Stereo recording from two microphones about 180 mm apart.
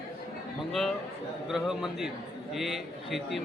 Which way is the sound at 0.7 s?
Centre (ahead or behind).